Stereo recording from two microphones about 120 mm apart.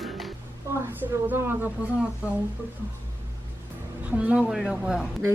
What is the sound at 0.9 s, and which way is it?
Speech, 15° right (ahead or behind).